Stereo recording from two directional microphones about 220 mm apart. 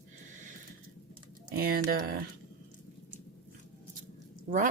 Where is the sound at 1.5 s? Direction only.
45° right (ahead or behind).